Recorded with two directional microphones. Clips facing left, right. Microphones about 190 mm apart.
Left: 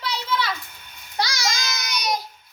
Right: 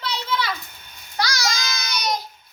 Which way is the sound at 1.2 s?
25° left (ahead or behind).